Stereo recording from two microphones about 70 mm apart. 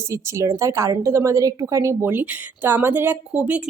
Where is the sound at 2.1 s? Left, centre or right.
Right.